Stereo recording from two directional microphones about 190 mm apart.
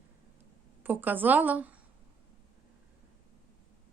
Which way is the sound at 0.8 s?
10° right (ahead or behind).